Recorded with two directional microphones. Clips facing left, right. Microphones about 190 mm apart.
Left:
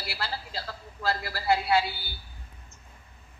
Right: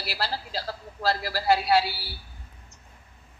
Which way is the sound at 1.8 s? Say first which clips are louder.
Right 2 dB; 90° right.